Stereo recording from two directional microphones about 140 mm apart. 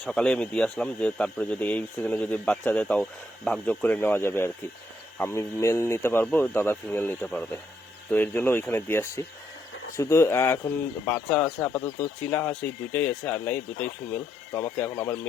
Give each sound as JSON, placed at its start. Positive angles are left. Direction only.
{"t": 0.0, "sound": "speech", "side_deg": 5}
{"t": 11.1, "sound": "speech", "side_deg": 5}